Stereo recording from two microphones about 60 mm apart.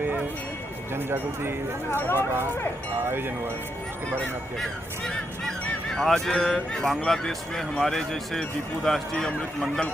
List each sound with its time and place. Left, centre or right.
0.9 s speech: right
1.9 s speech: left
2.1 s speech: right
4.6 s speech: centre